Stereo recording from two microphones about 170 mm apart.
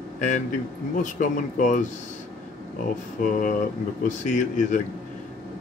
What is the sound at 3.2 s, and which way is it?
A man's voice, 50° left (ahead or behind).